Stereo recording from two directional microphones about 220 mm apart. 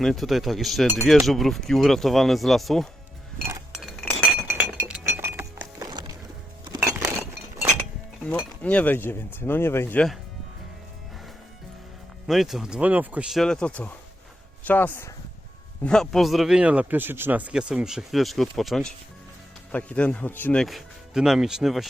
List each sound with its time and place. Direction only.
0.0 s a man's voice: centre (ahead or behind)
3.8 s chink: centre (ahead or behind)
8.2 s speech: 5° left (ahead or behind)
12.3 s a man's voice: centre (ahead or behind)